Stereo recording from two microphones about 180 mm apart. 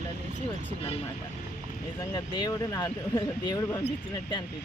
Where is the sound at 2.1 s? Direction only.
25° left (ahead or behind).